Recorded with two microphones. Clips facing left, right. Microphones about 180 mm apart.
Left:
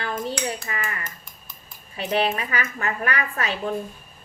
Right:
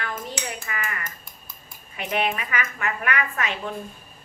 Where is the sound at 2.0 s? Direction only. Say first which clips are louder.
Left 3 dB; 35° left (ahead or behind).